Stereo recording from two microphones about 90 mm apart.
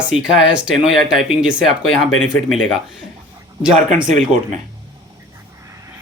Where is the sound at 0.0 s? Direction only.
10° right (ahead or behind).